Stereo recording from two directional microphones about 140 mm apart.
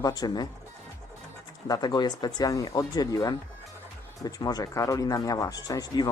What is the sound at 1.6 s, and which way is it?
Speech, 30° left (ahead or behind).